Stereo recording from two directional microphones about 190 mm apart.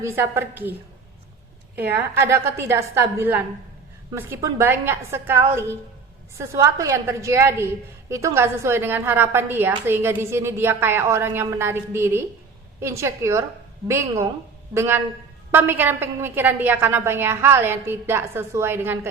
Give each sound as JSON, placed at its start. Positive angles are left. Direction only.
{"t": 0.0, "sound": "a woman's voice", "side_deg": -15}
{"t": 1.9, "sound": "a woman's voice", "side_deg": -10}